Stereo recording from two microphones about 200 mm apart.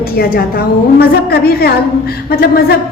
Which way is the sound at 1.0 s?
50° left (ahead or behind).